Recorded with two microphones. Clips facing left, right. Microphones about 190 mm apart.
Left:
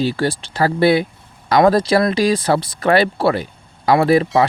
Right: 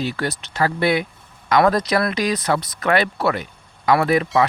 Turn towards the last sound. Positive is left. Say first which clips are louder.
# left 4 dB
turn(degrees=30)  # may be behind; listen again after turning